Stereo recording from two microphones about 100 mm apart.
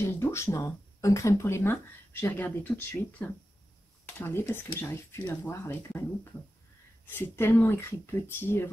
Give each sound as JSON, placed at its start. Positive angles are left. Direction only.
{"t": 0.0, "sound": "speech", "side_deg": 25}
{"t": 7.1, "sound": "speech", "side_deg": 20}